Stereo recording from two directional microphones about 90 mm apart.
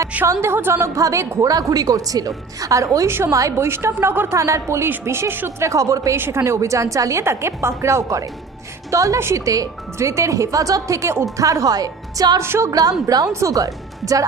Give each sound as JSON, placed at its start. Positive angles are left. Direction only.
{"t": 0.3, "sound": "speech", "side_deg": -25}
{"t": 3.1, "sound": "a woman's voice", "side_deg": -25}
{"t": 12.4, "sound": "a woman's voice", "side_deg": -30}